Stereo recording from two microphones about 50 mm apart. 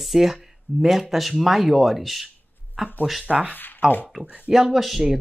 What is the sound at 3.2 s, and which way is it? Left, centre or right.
Speech, right.